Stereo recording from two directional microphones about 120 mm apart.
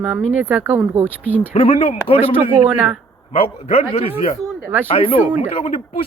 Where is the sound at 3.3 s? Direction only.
55° left (ahead or behind).